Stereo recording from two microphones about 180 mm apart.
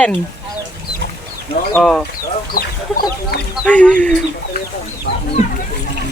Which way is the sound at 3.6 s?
5° left (ahead or behind).